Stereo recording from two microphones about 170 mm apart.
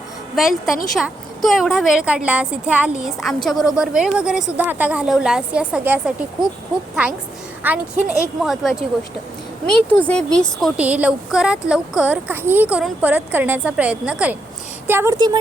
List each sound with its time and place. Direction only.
0.3 s a woman's voice: centre (ahead or behind)
7.6 s a woman's voice: 10° right (ahead or behind)
10.1 s a woman's voice: 5° left (ahead or behind)
10.6 s a woman's voice: 10° right (ahead or behind)